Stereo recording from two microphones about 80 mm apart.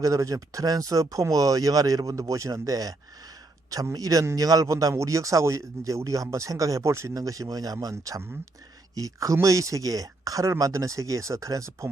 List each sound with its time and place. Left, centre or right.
0.0 s a man's voice: right
3.9 s a man's voice: right